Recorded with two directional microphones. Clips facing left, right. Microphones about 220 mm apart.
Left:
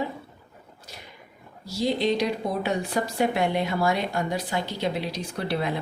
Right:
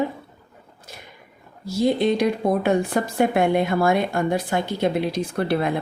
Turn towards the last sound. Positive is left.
turn(degrees=-50)  # may be behind; listen again after turning